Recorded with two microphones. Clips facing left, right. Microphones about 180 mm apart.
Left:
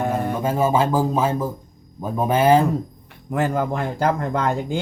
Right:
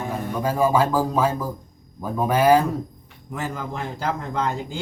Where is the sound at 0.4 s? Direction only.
25° left (ahead or behind).